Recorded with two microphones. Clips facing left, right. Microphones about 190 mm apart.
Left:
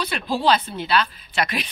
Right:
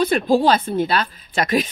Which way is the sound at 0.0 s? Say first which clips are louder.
Right 7 dB; 50° right (ahead or behind).